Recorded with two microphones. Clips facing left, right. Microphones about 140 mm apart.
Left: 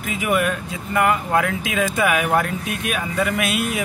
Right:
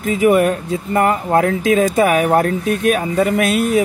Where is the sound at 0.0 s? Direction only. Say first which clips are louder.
Right 8 dB; 35° right (ahead or behind).